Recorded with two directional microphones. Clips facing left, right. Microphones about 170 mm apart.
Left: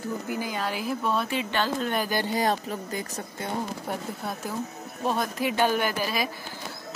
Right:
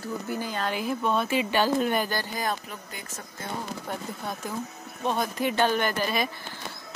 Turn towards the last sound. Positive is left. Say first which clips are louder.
# right 1 dB
turn(degrees=5)  # may be behind; listen again after turning